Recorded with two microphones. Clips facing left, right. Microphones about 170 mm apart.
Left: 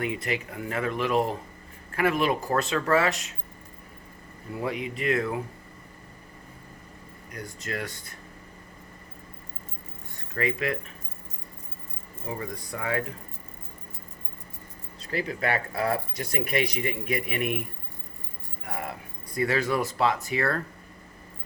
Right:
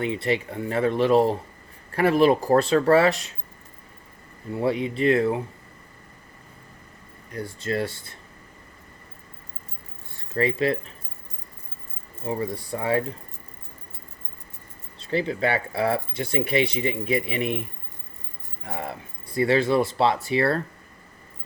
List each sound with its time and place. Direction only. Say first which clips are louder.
0.0 s speech: right 5 dB; 30° right (ahead or behind)
4.5 s speech: right 6 dB; 30° right (ahead or behind)
7.3 s speech: right 7 dB; 30° right (ahead or behind)
10.2 s speech: right 5 dB; 30° right (ahead or behind)
12.3 s speech: right 6 dB; 30° right (ahead or behind)
14.9 s speech: right 5 dB; 30° right (ahead or behind)
19.3 s speech: right 5 dB; 30° right (ahead or behind)